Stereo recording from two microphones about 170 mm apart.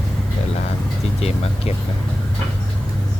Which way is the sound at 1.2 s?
35° left (ahead or behind).